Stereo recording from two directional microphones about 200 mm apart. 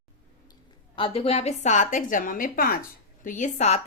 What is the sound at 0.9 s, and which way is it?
A woman's voice, 25° left (ahead or behind).